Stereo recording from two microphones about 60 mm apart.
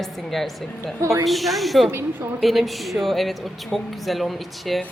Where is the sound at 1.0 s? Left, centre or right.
Right.